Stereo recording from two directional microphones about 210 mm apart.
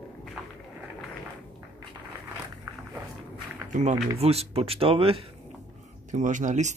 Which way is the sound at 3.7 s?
35° right (ahead or behind).